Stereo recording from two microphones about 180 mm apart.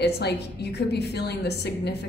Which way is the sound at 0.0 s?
65° left (ahead or behind).